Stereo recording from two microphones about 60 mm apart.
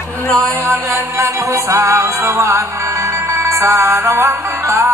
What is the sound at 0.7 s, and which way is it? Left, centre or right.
Music, right.